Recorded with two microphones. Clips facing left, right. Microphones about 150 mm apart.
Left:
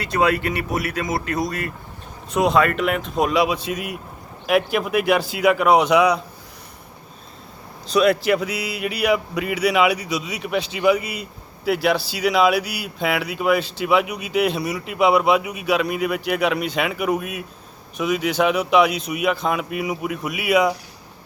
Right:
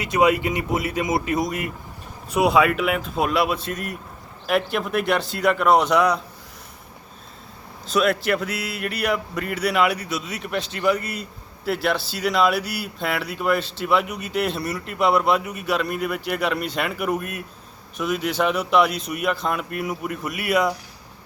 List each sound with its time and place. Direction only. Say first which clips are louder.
0.0 s speech: right 1 dB; 20° right (ahead or behind)
2.3 s a man's voice: even; 10° right (ahead or behind)
7.9 s a man's voice: left 3 dB; centre (ahead or behind)